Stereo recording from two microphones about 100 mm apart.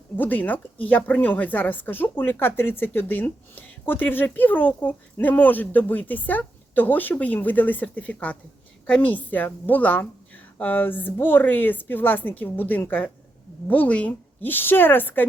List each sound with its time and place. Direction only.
0.2 s a woman's voice: 15° left (ahead or behind)